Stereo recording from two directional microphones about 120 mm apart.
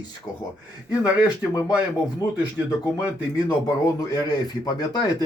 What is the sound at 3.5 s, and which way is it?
Speech, 30° left (ahead or behind).